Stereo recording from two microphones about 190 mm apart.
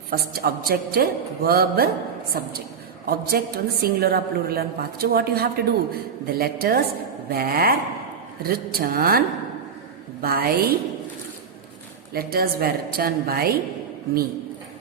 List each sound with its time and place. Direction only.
0.1 s a woman's voice: 55° right (ahead or behind)
12.1 s a woman's voice: 55° right (ahead or behind)